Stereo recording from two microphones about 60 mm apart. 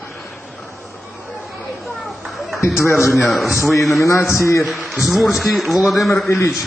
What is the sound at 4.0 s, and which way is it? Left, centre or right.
Speech, left.